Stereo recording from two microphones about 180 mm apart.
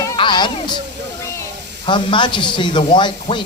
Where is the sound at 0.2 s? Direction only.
25° left (ahead or behind).